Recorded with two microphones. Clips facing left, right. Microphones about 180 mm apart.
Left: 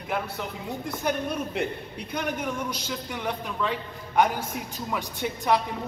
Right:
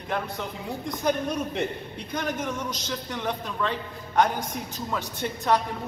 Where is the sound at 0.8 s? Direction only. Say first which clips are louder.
Right 2 dB; 5° left (ahead or behind).